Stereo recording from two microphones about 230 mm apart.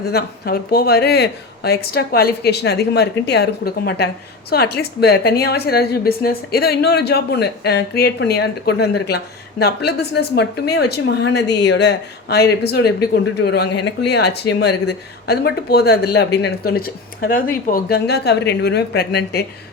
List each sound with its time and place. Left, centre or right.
0.1 s speech: left